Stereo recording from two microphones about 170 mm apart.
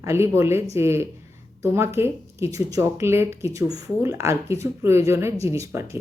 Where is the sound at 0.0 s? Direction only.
15° right (ahead or behind).